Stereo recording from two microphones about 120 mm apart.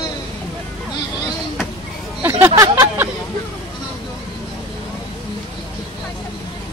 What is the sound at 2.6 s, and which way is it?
Speech, 20° right (ahead or behind).